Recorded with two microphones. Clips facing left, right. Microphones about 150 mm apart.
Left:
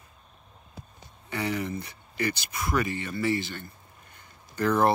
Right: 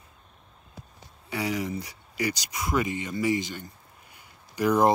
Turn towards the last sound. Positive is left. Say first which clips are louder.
# right 2 dB
turn(degrees=-15)  # may be behind; listen again after turning